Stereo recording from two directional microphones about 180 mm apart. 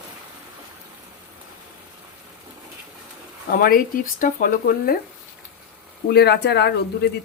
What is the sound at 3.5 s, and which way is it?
Speech, 50° left (ahead or behind).